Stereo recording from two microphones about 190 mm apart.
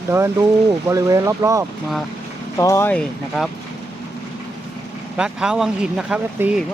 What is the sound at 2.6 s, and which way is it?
Speech, 15° left (ahead or behind).